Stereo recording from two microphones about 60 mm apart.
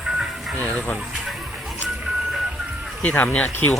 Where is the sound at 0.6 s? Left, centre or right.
Left.